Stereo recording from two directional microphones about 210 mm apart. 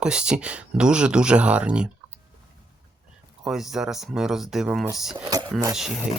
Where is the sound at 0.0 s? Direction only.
5° right (ahead or behind).